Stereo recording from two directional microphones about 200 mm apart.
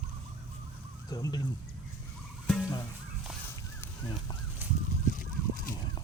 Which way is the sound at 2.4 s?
Centre (ahead or behind).